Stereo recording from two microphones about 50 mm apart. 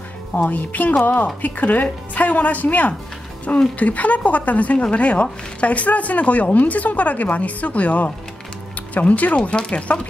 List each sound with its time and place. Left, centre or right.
0.4 s a woman's voice: left